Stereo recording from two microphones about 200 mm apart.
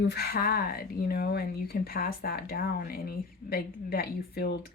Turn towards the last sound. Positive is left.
turn(degrees=50)  # may be behind; listen again after turning